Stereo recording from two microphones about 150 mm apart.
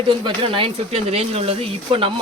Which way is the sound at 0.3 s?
35° right (ahead or behind).